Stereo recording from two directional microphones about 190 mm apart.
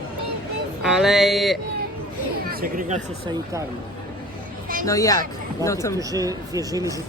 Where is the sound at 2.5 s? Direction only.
50° right (ahead or behind).